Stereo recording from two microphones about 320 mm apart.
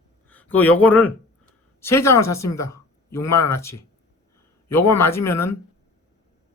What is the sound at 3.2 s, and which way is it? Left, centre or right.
Speech, left.